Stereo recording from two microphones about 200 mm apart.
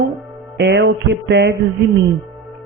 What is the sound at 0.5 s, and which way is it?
Speech, 55° right (ahead or behind).